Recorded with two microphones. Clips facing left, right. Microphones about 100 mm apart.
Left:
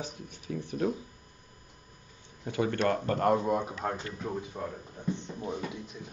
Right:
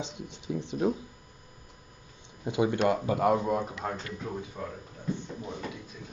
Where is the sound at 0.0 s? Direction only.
20° right (ahead or behind).